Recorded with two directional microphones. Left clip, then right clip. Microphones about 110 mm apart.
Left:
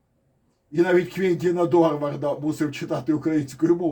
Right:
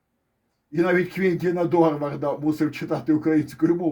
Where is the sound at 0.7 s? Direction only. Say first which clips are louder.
Left 1 dB; 50° right (ahead or behind).